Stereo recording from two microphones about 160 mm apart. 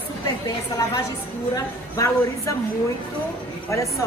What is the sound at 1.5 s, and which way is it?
Speech, 20° left (ahead or behind).